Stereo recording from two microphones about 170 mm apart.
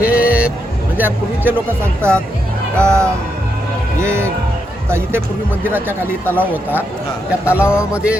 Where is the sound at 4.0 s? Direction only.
15° right (ahead or behind).